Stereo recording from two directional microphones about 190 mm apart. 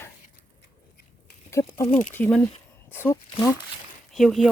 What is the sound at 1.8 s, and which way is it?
Speech, 35° left (ahead or behind).